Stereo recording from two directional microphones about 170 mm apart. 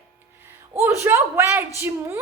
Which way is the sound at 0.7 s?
15° right (ahead or behind).